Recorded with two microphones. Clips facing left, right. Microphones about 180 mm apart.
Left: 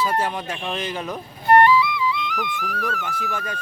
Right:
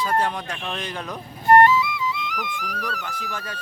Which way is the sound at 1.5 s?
45° right (ahead or behind).